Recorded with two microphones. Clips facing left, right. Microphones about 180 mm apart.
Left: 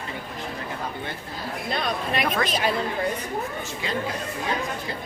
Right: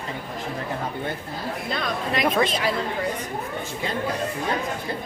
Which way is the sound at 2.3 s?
25° right (ahead or behind).